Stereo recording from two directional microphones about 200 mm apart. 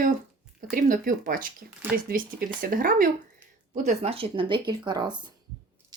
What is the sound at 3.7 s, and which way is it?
Speech, 35° right (ahead or behind).